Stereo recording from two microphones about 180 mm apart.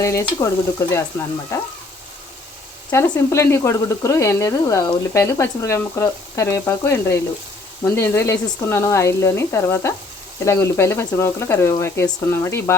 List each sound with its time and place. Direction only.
0.0 s speech: 15° left (ahead or behind)
2.9 s speech: 15° left (ahead or behind)